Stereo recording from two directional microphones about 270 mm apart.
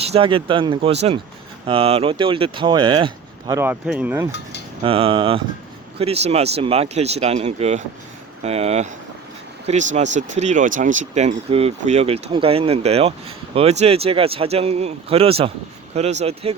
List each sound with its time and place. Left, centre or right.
0.0 s speech: right
4.8 s speech: centre